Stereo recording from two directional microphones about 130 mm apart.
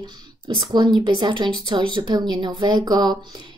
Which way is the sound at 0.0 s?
35° right (ahead or behind).